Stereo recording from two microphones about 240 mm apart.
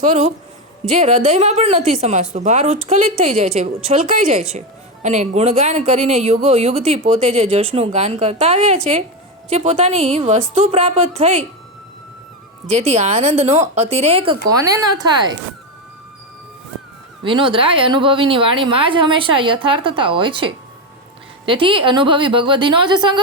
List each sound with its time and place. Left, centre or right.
0.0 s speech: right
12.6 s speech: right
17.2 s speech: right